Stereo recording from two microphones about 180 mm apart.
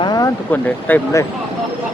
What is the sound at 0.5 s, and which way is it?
Speech, 10° left (ahead or behind).